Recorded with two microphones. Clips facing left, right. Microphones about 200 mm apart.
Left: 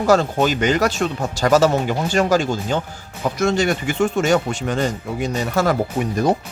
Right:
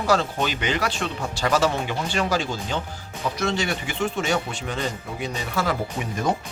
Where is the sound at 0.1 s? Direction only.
45° left (ahead or behind).